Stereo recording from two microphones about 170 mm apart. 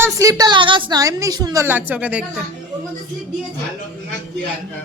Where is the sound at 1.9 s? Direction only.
10° right (ahead or behind).